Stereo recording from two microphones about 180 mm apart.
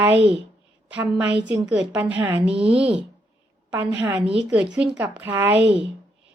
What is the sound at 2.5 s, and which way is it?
Speech, 30° right (ahead or behind).